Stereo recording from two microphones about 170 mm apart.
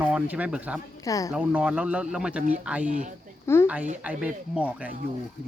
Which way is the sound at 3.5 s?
15° left (ahead or behind).